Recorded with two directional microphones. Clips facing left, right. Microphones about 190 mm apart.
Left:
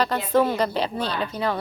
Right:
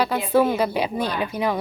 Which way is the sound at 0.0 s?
10° right (ahead or behind).